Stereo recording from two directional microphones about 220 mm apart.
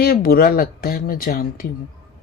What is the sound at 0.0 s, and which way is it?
Speech, 45° left (ahead or behind).